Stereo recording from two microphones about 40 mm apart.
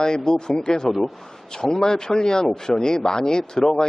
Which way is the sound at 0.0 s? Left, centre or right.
Centre.